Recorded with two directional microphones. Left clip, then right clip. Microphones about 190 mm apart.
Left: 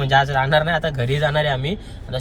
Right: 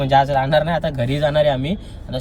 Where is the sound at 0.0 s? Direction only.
5° right (ahead or behind).